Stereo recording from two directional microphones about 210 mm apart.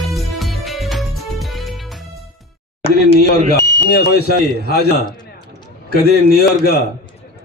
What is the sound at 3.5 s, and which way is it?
A man's voice, 50° left (ahead or behind).